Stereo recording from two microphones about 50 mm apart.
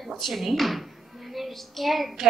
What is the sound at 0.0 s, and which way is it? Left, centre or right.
A child's voice, centre.